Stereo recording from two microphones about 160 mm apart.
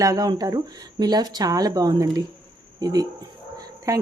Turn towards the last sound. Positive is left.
turn(degrees=-20)  # may be behind; listen again after turning